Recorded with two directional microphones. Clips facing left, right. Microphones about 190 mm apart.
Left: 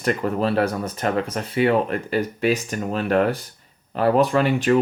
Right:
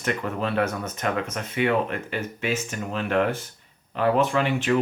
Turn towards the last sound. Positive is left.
turn(degrees=40)  # may be behind; listen again after turning